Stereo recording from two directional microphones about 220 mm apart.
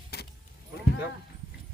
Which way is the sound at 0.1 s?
45° left (ahead or behind).